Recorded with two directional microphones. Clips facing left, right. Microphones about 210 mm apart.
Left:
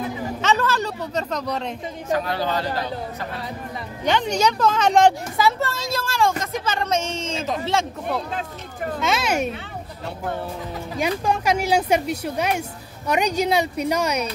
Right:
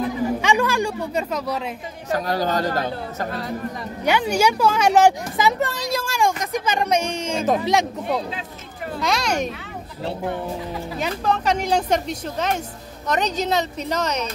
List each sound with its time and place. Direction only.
0.4 s speech: 15° right (ahead or behind)
2.1 s speech: 40° right (ahead or behind)
4.0 s speech: 10° right (ahead or behind)
7.3 s speech: 55° right (ahead or behind)
7.6 s speech: 15° right (ahead or behind)
9.0 s speech: 5° left (ahead or behind)
11.0 s speech: 10° left (ahead or behind)